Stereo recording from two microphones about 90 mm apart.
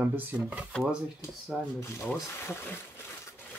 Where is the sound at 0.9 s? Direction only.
5° right (ahead or behind).